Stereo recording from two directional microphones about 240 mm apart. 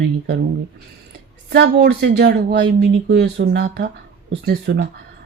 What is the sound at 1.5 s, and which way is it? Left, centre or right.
Speech, right.